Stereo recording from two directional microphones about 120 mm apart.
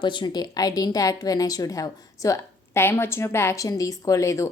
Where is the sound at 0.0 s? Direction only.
40° left (ahead or behind).